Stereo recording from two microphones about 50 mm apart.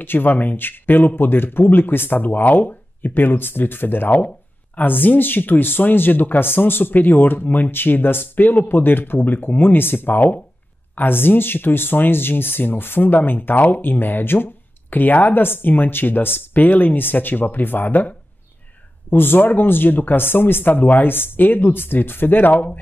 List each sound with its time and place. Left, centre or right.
0.0 s speech: left